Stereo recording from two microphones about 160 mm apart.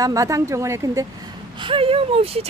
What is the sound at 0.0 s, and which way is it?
Speech, 20° right (ahead or behind).